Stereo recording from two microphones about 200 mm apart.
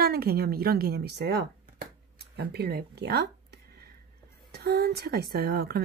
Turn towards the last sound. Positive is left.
turn(degrees=-50)  # may be behind; listen again after turning